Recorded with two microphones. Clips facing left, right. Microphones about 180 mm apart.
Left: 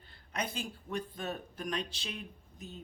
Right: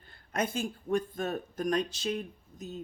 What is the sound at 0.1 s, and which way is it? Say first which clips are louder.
Speech: right 6 dB; 50° right (ahead or behind).